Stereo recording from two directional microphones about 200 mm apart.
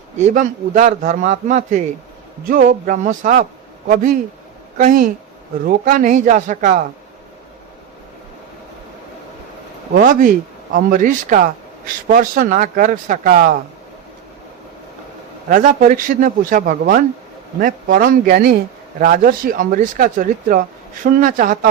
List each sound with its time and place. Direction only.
0.2 s a man's voice: 35° right (ahead or behind)
9.9 s a man's voice: 40° right (ahead or behind)
15.4 s speech: 40° right (ahead or behind)